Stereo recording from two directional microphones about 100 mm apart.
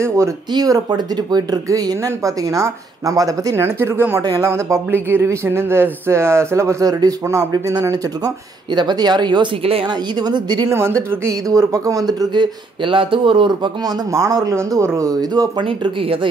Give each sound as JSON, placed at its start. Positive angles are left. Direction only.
{"t": 0.5, "sound": "speech", "side_deg": -40}
{"t": 4.2, "sound": "speech", "side_deg": -35}
{"t": 4.5, "sound": "speech", "side_deg": -25}
{"t": 9.6, "sound": "speech", "side_deg": -70}
{"t": 9.8, "sound": "speech", "side_deg": -45}
{"t": 10.7, "sound": "speech", "side_deg": -25}
{"t": 14.1, "sound": "speech", "side_deg": -35}
{"t": 15.6, "sound": "speech", "side_deg": -65}